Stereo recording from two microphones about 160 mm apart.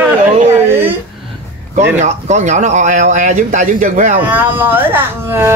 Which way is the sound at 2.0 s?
45° right (ahead or behind).